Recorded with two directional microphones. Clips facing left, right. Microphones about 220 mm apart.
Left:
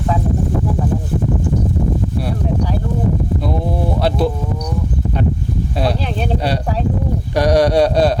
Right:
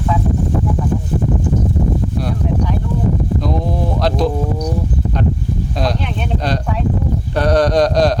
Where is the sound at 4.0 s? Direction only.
5° left (ahead or behind).